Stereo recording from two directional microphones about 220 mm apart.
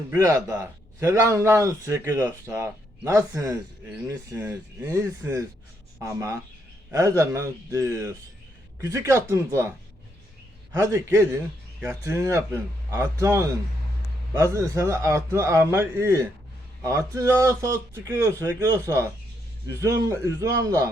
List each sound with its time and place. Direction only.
0.1 s speech: 15° right (ahead or behind)
19.6 s speech: 15° right (ahead or behind)